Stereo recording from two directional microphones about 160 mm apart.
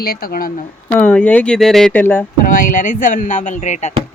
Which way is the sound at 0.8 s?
10° left (ahead or behind).